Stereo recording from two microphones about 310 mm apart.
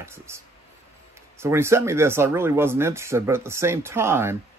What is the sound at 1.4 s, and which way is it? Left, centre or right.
Speech, centre.